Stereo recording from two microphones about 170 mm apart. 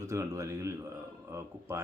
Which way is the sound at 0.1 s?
20° right (ahead or behind).